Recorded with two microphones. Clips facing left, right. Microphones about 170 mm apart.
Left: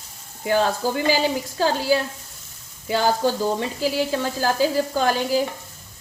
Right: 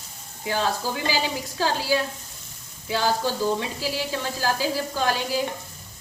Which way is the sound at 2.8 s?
50° left (ahead or behind).